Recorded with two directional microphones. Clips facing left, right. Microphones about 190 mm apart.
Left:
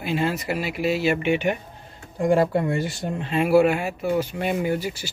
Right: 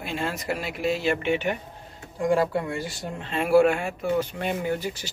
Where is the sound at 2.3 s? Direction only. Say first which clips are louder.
Left 4 dB; 25° left (ahead or behind).